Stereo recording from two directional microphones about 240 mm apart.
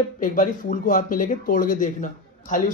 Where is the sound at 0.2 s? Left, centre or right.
Left.